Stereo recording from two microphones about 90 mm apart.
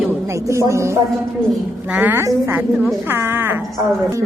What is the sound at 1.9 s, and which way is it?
A woman's voice, 15° right (ahead or behind).